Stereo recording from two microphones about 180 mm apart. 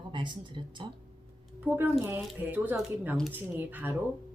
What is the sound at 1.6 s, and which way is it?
Speech, 10° right (ahead or behind).